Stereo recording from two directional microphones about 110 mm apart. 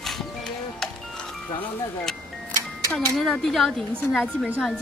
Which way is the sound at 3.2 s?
Centre (ahead or behind).